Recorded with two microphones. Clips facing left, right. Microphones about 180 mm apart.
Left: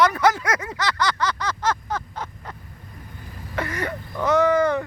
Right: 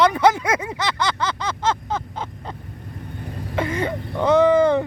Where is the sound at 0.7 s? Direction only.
25° right (ahead or behind).